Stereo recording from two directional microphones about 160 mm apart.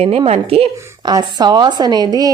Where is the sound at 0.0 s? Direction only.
40° right (ahead or behind).